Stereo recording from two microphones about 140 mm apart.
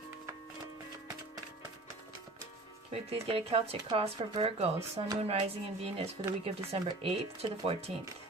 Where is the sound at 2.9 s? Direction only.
45° right (ahead or behind).